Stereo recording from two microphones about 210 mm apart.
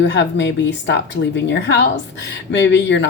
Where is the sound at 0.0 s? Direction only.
55° left (ahead or behind).